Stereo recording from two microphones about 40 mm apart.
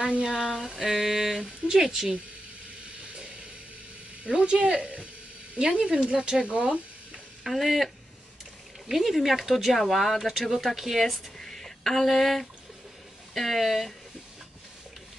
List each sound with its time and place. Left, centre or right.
0.2 s speech: centre
0.7 s a sound: centre
1.4 s speech: centre
4.2 s speech: right
7.4 s speech: centre
11.3 s a sound: centre
13.3 s speech: centre